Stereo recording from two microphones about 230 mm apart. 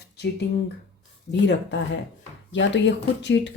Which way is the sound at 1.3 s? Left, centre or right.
Left.